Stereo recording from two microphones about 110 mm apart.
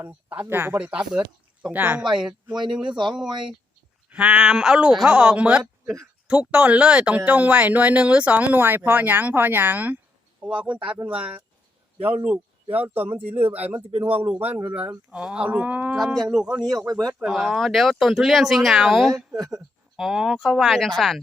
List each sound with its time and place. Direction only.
0.3 s speech: 20° right (ahead or behind)
2.6 s speech: 5° right (ahead or behind)
2.9 s speech: 45° right (ahead or behind)
4.1 s speech: 10° right (ahead or behind)
16.0 s speech: centre (ahead or behind)
16.7 s speech: 35° right (ahead or behind)
17.1 s speech: centre (ahead or behind)